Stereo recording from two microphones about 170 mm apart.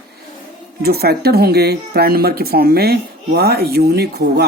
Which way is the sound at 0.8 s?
65° right (ahead or behind).